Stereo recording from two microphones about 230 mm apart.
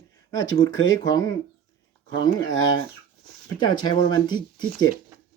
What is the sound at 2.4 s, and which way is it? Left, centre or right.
Speech, left.